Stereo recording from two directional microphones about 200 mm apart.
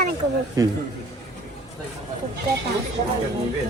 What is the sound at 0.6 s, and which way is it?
Speech, 15° right (ahead or behind).